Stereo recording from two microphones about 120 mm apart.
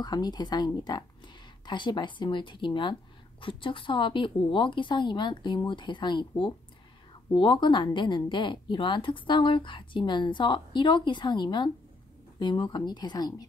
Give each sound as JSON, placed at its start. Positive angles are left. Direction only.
{"t": 0.0, "sound": "speech", "side_deg": 35}